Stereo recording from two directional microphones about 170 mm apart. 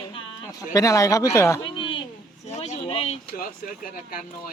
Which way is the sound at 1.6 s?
30° left (ahead or behind).